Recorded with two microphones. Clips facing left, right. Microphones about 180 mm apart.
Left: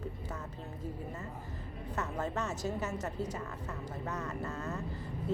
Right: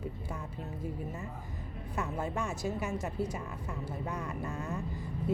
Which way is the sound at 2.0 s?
10° right (ahead or behind).